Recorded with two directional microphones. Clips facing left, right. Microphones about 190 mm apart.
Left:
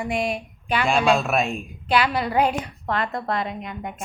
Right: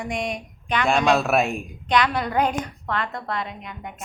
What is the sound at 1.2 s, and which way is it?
Speech, 5° right (ahead or behind).